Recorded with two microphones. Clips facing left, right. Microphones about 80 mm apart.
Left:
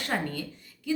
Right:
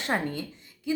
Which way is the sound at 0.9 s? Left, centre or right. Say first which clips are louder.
Even; right.